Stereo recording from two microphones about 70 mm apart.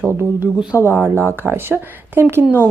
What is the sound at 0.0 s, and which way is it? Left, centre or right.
Speech, right.